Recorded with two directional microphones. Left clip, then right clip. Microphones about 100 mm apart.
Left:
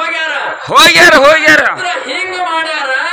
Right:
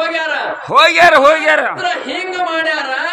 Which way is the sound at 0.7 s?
5° right (ahead or behind).